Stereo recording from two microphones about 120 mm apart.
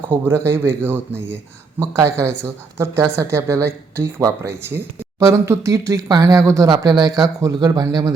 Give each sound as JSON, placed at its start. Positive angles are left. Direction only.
{"t": 0.3, "sound": "speech", "side_deg": -20}